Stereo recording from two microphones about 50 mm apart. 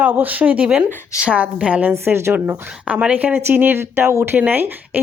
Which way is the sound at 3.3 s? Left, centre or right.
Right.